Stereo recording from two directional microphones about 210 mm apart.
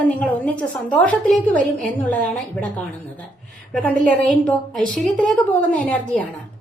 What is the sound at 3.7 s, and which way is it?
A woman's voice, 10° left (ahead or behind).